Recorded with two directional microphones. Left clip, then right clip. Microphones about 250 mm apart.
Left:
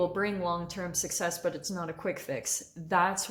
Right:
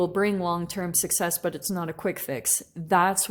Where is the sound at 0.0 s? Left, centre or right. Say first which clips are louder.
Right 5 dB; right.